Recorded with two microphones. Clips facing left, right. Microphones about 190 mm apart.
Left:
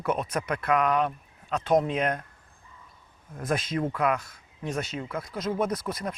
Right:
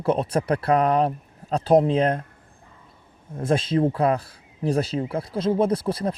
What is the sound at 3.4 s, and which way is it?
Speech, 30° right (ahead or behind).